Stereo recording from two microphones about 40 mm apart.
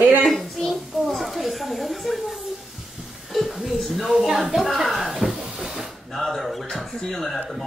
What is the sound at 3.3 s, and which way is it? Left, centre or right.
A woman's voice, centre.